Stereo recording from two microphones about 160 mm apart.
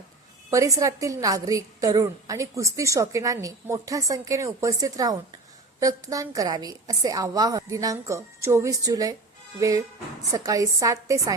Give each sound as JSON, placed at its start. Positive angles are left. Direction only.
{"t": 0.5, "sound": "a woman's voice", "side_deg": -20}